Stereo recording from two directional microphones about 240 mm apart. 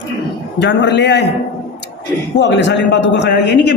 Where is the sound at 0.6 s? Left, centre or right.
Left.